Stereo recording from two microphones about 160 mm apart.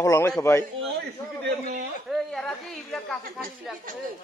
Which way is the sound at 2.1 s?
5° left (ahead or behind).